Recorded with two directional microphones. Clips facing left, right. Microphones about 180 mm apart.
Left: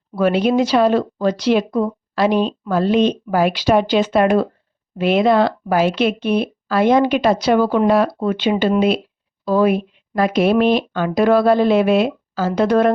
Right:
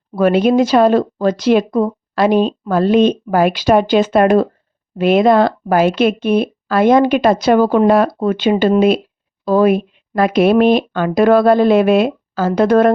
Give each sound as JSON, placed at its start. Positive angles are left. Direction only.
{"t": 0.2, "sound": "speech", "side_deg": -50}